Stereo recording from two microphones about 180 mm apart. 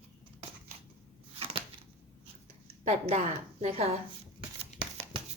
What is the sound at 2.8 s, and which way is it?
A woman's voice, 35° right (ahead or behind).